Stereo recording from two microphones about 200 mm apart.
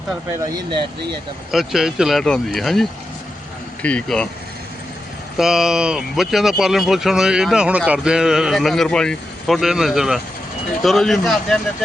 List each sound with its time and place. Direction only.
0.4 s speech: 20° right (ahead or behind)
1.5 s speech: centre (ahead or behind)
3.8 s speech: 5° left (ahead or behind)
5.4 s speech: centre (ahead or behind)